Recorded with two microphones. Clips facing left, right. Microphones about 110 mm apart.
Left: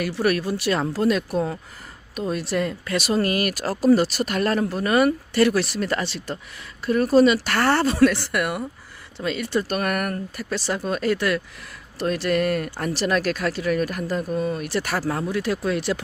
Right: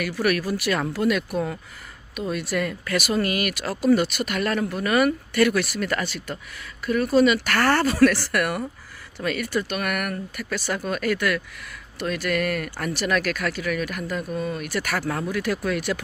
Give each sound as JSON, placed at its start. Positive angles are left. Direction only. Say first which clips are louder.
{"t": 0.0, "sound": "speech", "louder": "left 1 dB", "side_deg": 30}
{"t": 9.6, "sound": "speech", "louder": "left 3 dB", "side_deg": 35}